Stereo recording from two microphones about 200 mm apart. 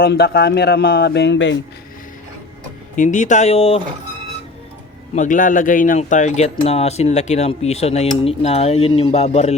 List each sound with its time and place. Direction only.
0.0 s a man's voice: 50° left (ahead or behind)
2.9 s speech: 40° left (ahead or behind)
5.1 s speech: 40° left (ahead or behind)